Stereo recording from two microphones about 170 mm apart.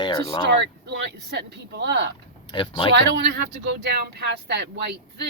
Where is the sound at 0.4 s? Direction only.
90° right.